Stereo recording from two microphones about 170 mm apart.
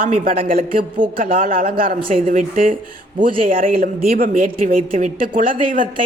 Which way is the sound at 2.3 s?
50° right (ahead or behind).